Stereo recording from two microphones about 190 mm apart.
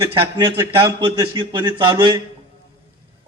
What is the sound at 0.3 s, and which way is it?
A man's voice, 20° right (ahead or behind).